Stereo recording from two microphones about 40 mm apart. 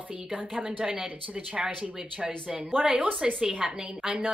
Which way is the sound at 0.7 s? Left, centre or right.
Right.